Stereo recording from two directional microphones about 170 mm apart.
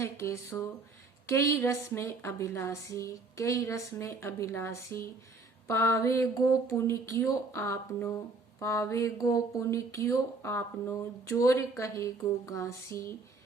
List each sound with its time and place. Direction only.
0.0 s speech: 15° left (ahead or behind)